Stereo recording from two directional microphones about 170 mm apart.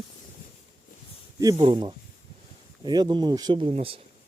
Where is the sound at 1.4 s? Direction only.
25° right (ahead or behind).